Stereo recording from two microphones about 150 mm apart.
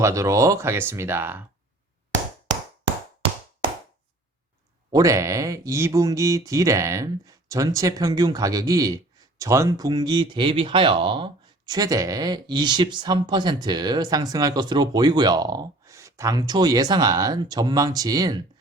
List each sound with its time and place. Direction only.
0.0 s speech: 20° right (ahead or behind)
3.2 s a sound: 40° right (ahead or behind)
4.9 s speech: 25° right (ahead or behind)